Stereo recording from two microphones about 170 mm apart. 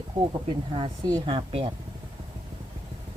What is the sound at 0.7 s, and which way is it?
A woman's voice, 30° right (ahead or behind).